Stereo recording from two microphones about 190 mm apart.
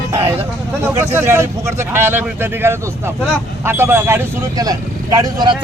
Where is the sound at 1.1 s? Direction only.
10° right (ahead or behind).